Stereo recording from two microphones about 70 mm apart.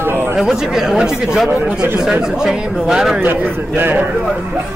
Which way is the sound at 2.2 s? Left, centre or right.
Centre.